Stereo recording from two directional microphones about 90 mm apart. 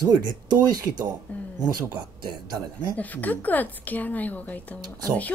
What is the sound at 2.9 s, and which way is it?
A woman's voice, 20° left (ahead or behind).